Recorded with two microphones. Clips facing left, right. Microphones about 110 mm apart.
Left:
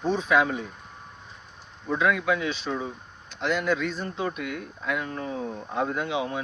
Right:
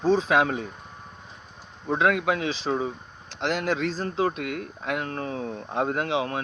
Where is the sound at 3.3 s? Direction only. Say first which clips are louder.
Even; 90° right.